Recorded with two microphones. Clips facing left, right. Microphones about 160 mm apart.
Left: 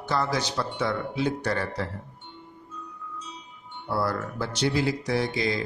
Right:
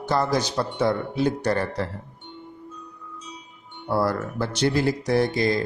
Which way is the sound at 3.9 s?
50° right (ahead or behind).